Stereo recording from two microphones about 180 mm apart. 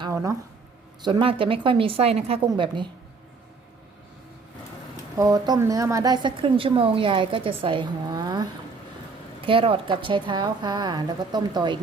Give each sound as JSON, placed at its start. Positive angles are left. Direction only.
{"t": 0.1, "sound": "speech", "side_deg": -15}
{"t": 1.0, "sound": "a woman's voice", "side_deg": -30}
{"t": 5.1, "sound": "a woman's voice", "side_deg": -20}